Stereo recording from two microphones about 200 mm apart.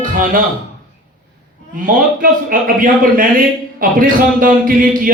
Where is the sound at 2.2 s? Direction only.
45° right (ahead or behind).